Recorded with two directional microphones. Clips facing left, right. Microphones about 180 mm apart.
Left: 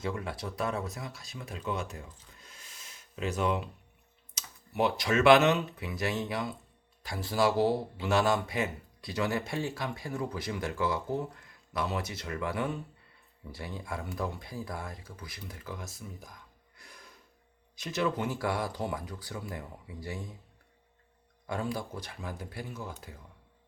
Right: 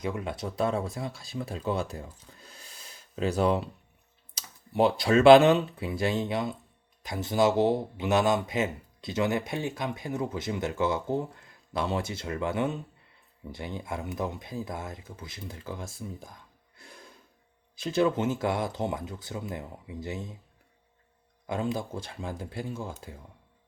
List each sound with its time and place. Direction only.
0.0 s speech: 20° right (ahead or behind)
2.4 s a sound: 35° right (ahead or behind)
4.4 s speech: 30° right (ahead or behind)
21.4 s speech: 20° right (ahead or behind)